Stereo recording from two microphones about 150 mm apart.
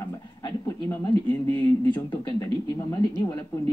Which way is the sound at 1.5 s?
30° left (ahead or behind).